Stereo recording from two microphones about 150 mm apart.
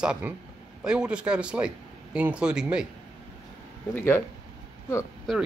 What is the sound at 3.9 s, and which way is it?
Speech, 15° left (ahead or behind).